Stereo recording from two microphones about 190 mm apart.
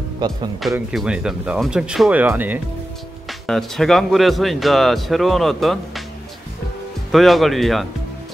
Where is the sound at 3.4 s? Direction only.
Centre (ahead or behind).